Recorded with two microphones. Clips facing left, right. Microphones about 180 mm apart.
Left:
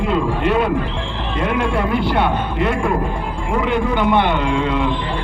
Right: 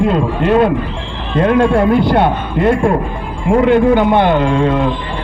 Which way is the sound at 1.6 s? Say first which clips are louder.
Right 8 dB; 50° right (ahead or behind).